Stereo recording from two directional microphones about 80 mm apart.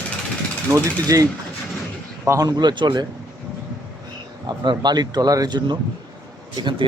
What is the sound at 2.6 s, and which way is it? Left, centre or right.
Speech, right.